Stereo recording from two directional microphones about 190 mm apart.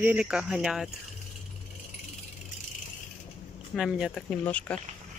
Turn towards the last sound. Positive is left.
turn(degrees=5)  # may be behind; listen again after turning